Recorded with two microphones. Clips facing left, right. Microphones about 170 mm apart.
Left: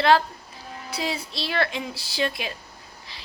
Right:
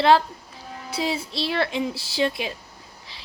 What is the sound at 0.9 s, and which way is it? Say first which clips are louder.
Child singing: right 3 dB; 25° right (ahead or behind).